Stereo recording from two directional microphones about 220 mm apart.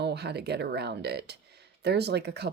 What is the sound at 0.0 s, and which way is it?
Speech, 50° right (ahead or behind).